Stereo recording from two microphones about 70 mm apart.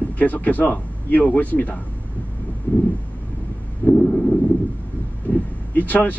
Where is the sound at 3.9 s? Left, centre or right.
Centre.